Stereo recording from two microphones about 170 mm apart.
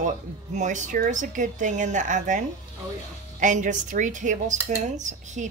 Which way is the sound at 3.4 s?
45° right (ahead or behind).